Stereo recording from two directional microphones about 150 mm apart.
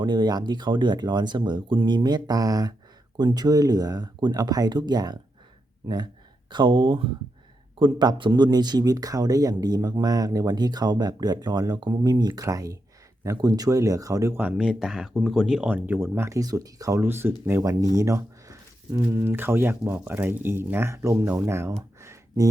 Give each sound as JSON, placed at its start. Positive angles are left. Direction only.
{"t": 0.0, "sound": "speech", "side_deg": -30}
{"t": 6.5, "sound": "speech", "side_deg": -30}
{"t": 14.6, "sound": "speech", "side_deg": -5}
{"t": 22.0, "sound": "a sound", "side_deg": -20}